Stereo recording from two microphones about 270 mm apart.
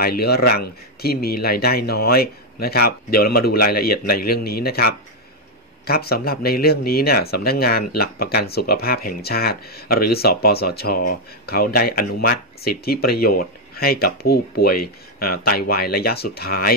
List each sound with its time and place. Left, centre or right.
0.0 s speech: left